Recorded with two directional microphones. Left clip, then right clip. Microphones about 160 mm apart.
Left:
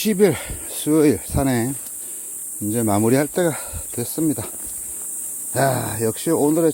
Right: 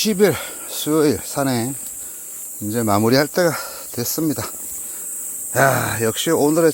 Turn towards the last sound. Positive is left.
turn(degrees=0)  # may be behind; listen again after turning